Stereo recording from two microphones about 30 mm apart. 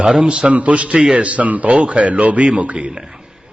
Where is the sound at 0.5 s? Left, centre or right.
Right.